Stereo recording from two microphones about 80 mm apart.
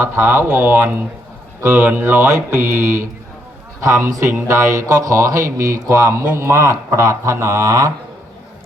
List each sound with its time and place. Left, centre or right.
0.0 s mantra: right
3.8 s speech: right